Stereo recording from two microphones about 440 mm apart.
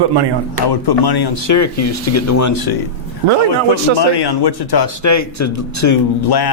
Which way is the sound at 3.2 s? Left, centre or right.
Right.